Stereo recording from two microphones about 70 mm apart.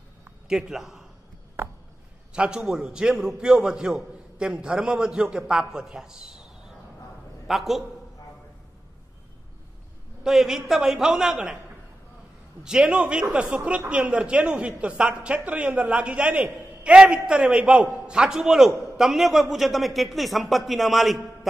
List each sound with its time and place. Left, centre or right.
0.5 s a man's voice: centre
1.6 s a sound: right
2.3 s a man's voice: centre
10.2 s a man's voice: centre
12.8 s a man's voice: centre